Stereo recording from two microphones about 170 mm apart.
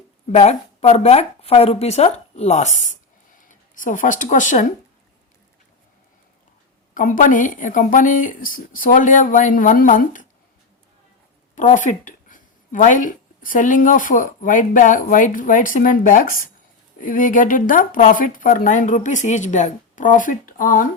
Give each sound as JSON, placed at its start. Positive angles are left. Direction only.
{"t": 0.3, "sound": "speech", "side_deg": 40}
{"t": 6.9, "sound": "a woman's voice", "side_deg": 50}
{"t": 11.5, "sound": "a woman's voice", "side_deg": 45}